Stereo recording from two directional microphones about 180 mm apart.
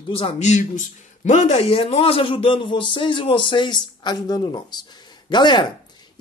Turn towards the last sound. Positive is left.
turn(degrees=25)  # may be behind; listen again after turning